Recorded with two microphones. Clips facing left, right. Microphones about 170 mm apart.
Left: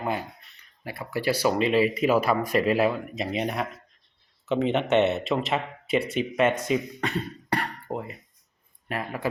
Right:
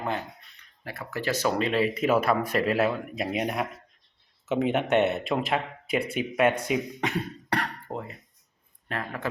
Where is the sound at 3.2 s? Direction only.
5° right (ahead or behind).